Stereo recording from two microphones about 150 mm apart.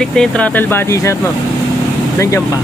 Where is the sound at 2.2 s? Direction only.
20° left (ahead or behind).